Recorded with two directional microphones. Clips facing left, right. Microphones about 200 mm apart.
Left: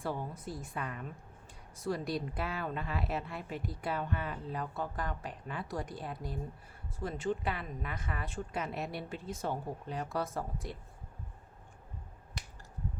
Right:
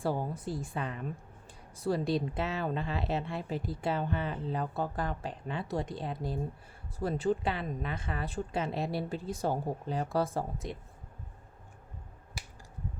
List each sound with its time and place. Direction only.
0.0 s speech: 35° right (ahead or behind)